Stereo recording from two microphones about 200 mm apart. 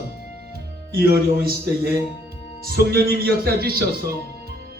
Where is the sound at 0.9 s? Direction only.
50° right (ahead or behind).